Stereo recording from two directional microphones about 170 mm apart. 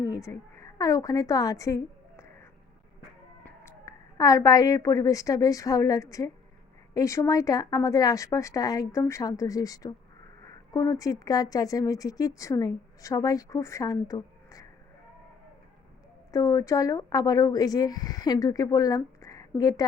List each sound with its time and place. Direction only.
0.0 s a woman's voice: 20° left (ahead or behind)
16.3 s speech: 20° left (ahead or behind)